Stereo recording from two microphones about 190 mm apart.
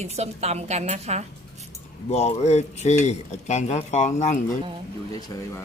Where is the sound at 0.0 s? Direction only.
35° right (ahead or behind).